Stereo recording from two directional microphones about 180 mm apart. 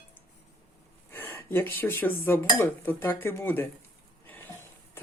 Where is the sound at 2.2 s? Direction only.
15° left (ahead or behind).